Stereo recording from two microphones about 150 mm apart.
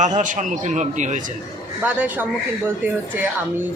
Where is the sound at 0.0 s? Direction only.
55° right (ahead or behind).